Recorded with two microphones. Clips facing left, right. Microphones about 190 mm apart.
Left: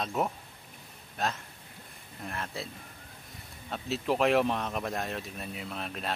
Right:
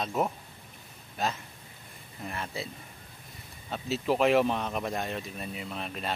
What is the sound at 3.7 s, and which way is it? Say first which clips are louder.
Speech: right 2 dB; centre (ahead or behind).